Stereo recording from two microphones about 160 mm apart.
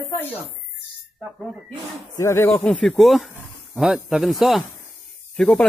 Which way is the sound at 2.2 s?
15° left (ahead or behind).